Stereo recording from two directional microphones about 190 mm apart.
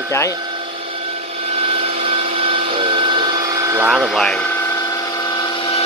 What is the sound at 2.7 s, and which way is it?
Printer, 25° right (ahead or behind).